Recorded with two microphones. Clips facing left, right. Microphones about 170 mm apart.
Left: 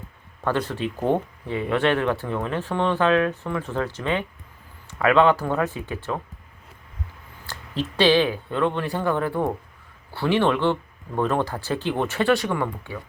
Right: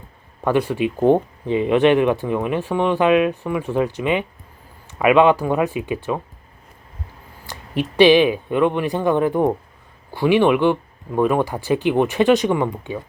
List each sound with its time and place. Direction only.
0.4 s speech: 15° right (ahead or behind)
7.4 s speech: 15° right (ahead or behind)